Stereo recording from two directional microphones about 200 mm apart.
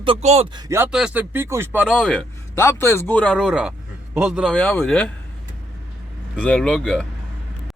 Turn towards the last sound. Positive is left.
turn(degrees=5)  # may be behind; listen again after turning